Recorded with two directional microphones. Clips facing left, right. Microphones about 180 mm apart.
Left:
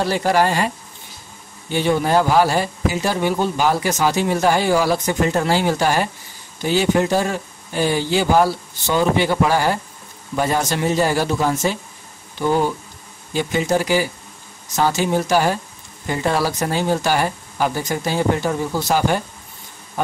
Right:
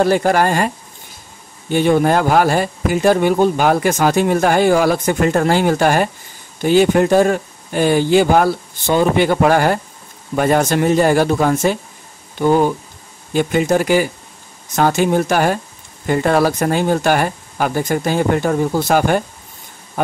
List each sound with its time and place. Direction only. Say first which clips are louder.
0.0 s speech: right 4 dB; 50° right (ahead or behind)
1.7 s speech: right 4 dB; 50° right (ahead or behind)